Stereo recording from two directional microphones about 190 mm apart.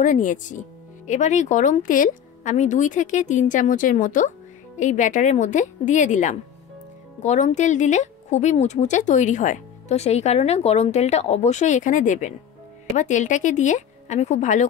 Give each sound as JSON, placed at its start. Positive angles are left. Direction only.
{"t": 0.0, "sound": "speech", "side_deg": 40}